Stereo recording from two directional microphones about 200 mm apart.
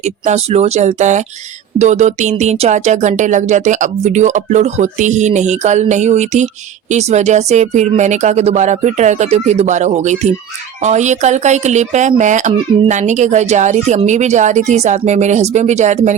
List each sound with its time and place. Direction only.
0.0 s speech: 35° right (ahead or behind)